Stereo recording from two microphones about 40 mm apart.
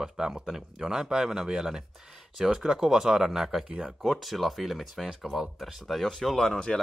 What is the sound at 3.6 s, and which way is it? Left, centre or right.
Speech, right.